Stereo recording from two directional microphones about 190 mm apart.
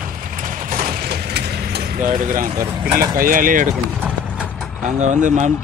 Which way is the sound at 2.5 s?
20° right (ahead or behind).